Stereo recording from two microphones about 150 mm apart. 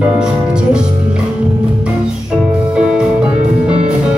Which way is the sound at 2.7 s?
5° right (ahead or behind).